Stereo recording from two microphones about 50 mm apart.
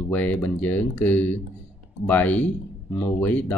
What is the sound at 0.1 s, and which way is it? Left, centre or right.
Speech, left.